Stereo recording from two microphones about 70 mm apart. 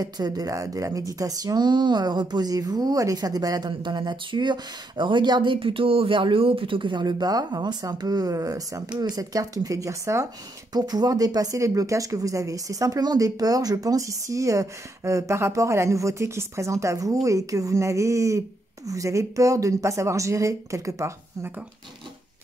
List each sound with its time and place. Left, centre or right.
0.0 s speech: right
6.9 s speech: right
10.7 s speech: right